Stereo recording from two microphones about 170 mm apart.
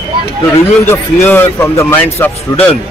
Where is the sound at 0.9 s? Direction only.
15° left (ahead or behind).